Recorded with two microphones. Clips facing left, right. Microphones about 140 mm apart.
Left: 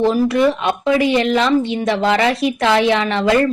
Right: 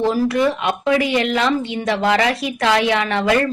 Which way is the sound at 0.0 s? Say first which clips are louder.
Left 3 dB; 20° left (ahead or behind).